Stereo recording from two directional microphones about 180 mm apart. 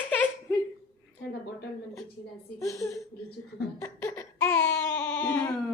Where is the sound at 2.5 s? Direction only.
15° left (ahead or behind).